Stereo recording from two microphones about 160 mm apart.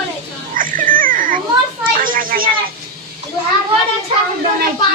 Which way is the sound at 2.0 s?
60° right (ahead or behind).